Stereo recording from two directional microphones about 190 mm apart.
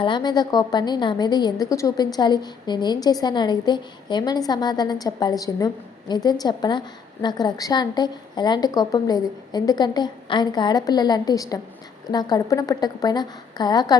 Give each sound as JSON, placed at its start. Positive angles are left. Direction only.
{"t": 0.0, "sound": "a woman's voice", "side_deg": 25}